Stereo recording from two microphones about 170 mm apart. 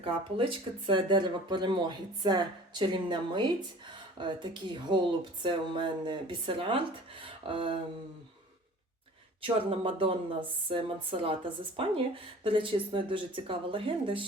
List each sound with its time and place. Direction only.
0.0 s speech: 30° right (ahead or behind)
9.4 s speech: 30° right (ahead or behind)